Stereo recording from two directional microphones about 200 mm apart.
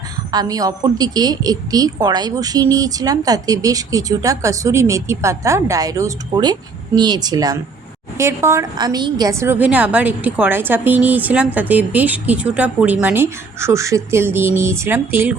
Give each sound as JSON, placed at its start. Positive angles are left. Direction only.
{"t": 0.3, "sound": "a woman's voice", "side_deg": -20}